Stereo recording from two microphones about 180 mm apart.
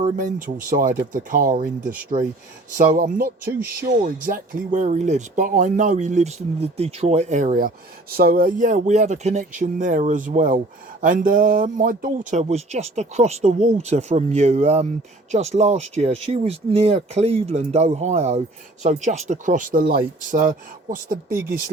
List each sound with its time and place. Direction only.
0.0 s speech: 45° right (ahead or behind)